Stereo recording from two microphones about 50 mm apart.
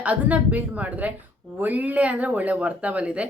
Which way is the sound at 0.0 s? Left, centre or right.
Right.